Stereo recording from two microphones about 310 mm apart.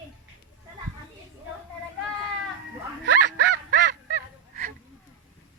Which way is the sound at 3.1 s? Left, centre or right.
Right.